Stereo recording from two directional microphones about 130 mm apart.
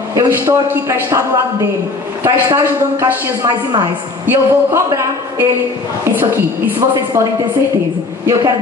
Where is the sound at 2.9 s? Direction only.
20° right (ahead or behind).